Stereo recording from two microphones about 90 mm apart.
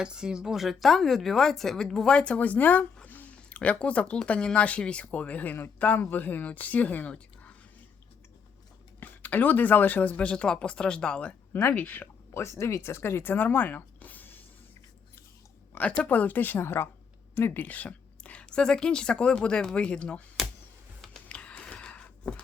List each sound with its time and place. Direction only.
0.0 s a woman's voice: 10° right (ahead or behind); by 7.5 s 15° left (ahead or behind)
9.0 s speech: 20° left (ahead or behind)
15.7 s a woman's voice: 15° left (ahead or behind)
21.0 s a sound: 10° left (ahead or behind)